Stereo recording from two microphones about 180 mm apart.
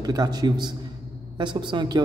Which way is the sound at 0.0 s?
20° right (ahead or behind).